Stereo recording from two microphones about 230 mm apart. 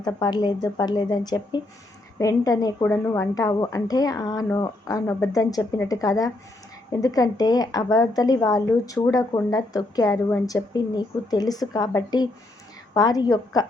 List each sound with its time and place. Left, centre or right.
0.0 s a woman's voice: centre